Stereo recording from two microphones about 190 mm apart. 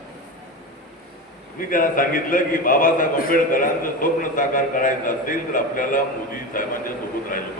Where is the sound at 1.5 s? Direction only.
45° left (ahead or behind).